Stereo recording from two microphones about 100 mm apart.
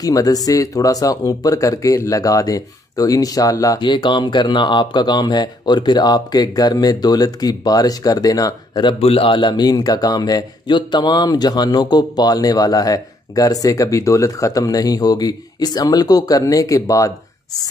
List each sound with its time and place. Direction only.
0.0 s speech: 40° left (ahead or behind)
3.8 s speech: 50° left (ahead or behind)
9.0 s speech: 70° left (ahead or behind); by 17.1 s 35° left (ahead or behind)